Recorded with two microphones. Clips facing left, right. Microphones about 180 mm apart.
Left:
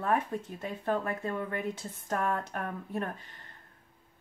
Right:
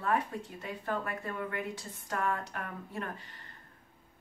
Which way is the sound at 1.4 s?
50° left (ahead or behind).